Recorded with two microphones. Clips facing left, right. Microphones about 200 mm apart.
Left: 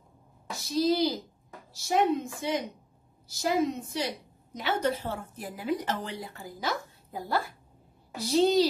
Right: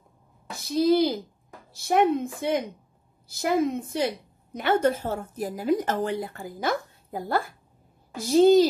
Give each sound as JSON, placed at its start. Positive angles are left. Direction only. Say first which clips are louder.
{"t": 0.5, "sound": "a woman's voice", "louder": "right 5 dB", "side_deg": -55}